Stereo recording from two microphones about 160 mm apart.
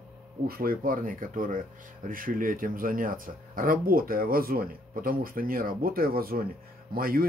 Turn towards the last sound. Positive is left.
turn(degrees=-70)  # may be behind; listen again after turning